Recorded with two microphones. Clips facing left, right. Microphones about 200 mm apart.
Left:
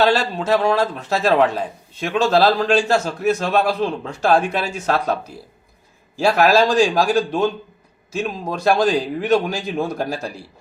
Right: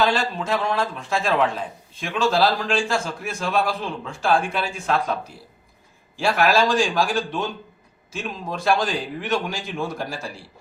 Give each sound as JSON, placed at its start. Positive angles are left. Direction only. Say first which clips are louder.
{"t": 0.2, "sound": "a man's voice", "louder": "left 5 dB", "side_deg": 40}
{"t": 6.1, "sound": "a man's voice", "louder": "left 4 dB", "side_deg": 40}